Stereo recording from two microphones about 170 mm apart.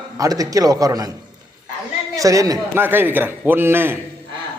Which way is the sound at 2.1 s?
20° right (ahead or behind).